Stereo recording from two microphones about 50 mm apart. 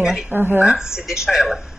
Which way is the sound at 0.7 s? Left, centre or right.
Centre.